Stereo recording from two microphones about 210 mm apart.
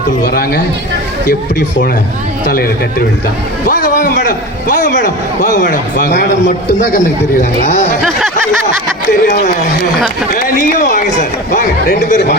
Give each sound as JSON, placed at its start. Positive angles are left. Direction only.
{"t": 0.3, "sound": "a man's voice", "side_deg": 45}
{"t": 3.7, "sound": "a man's voice", "side_deg": 40}
{"t": 9.2, "sound": "a man's voice", "side_deg": 35}